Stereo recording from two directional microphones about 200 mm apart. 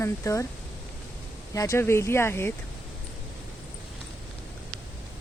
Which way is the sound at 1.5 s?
15° left (ahead or behind).